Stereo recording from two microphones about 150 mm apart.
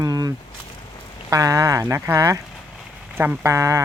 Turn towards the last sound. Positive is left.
turn(degrees=-20)  # may be behind; listen again after turning